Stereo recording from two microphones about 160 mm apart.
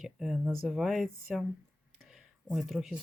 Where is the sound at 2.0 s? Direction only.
5° right (ahead or behind).